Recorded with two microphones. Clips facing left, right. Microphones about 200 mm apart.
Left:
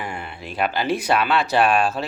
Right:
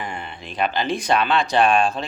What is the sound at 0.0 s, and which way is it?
Speech, 5° left (ahead or behind).